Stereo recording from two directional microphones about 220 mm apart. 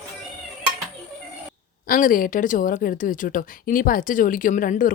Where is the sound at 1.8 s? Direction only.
40° left (ahead or behind).